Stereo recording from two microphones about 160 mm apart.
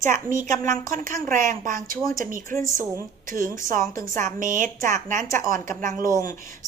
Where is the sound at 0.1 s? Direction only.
55° right (ahead or behind).